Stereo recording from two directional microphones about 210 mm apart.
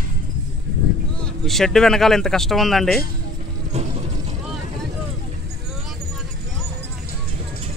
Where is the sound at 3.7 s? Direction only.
30° right (ahead or behind).